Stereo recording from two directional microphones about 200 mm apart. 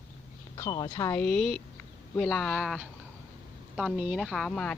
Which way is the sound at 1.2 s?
Centre (ahead or behind).